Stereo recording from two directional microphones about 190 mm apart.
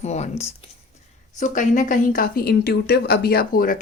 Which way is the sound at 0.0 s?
35° left (ahead or behind).